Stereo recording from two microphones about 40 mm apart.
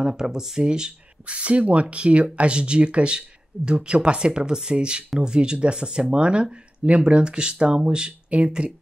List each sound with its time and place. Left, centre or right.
0.0 s speech: centre